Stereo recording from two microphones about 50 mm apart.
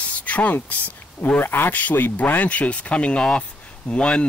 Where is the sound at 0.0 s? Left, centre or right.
Left.